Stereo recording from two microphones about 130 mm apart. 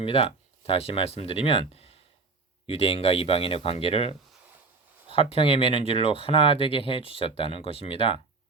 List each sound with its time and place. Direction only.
0.0 s speech: 45° left (ahead or behind)